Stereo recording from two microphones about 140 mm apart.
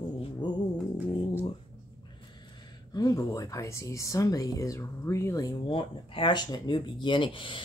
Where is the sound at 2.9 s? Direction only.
25° left (ahead or behind).